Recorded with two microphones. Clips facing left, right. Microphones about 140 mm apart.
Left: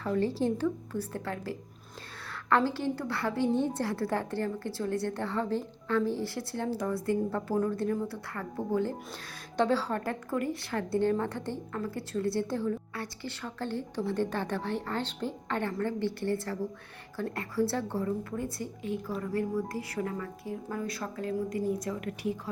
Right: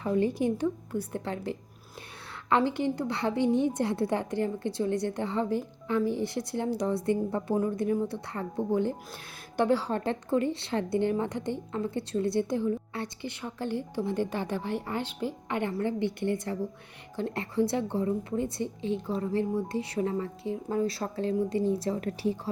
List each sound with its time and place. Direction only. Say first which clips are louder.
0.0 s a woman's voice: right 2 dB; 15° right (ahead or behind)